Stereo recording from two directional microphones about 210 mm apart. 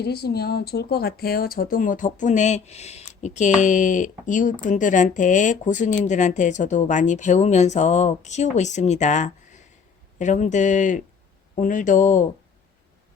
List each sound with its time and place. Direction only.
0.0 s speech: 50° left (ahead or behind)